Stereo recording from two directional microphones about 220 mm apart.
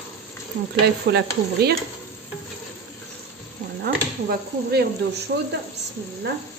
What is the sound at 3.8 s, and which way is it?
Speech, 45° right (ahead or behind).